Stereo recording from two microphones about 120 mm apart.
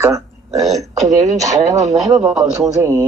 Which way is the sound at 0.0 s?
25° right (ahead or behind).